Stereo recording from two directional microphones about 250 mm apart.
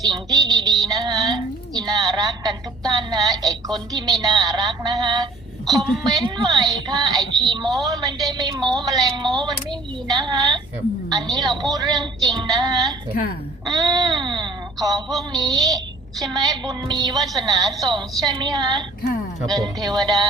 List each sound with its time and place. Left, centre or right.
0.0 s a woman's voice: centre